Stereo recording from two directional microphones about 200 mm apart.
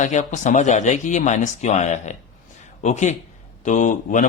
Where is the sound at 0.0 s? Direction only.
35° left (ahead or behind).